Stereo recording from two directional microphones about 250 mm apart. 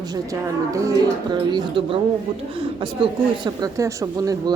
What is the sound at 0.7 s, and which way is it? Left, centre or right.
A woman's voice, centre.